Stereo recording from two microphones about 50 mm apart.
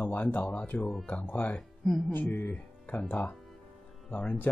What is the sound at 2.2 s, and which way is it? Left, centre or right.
Speech, left.